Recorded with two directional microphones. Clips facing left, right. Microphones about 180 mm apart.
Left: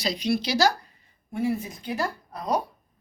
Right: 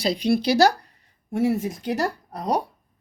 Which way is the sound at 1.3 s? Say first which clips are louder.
Right 5 dB; 85° right.